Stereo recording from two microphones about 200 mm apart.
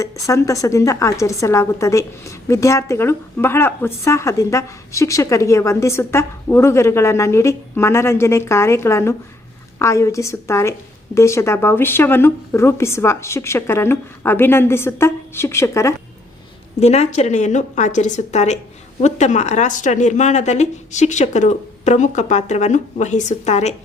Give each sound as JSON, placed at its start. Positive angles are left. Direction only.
{"t": 0.0, "sound": "a woman's voice", "side_deg": 15}
{"t": 16.8, "sound": "a woman's voice", "side_deg": 35}